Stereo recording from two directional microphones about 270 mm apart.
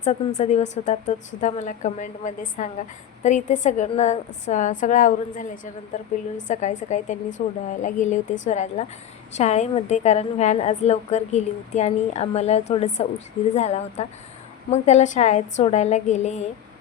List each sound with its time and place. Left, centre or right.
0.3 s a woman's voice: left